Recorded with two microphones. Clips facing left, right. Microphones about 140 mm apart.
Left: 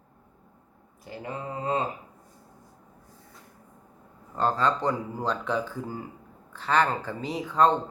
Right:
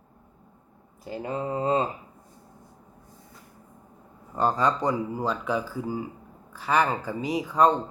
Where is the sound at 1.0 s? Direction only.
25° right (ahead or behind).